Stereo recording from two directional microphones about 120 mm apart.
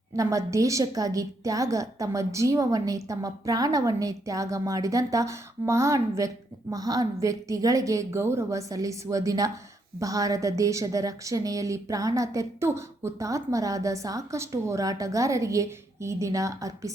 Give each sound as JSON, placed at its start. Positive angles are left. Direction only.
{"t": 0.2, "sound": "a woman's voice", "side_deg": -25}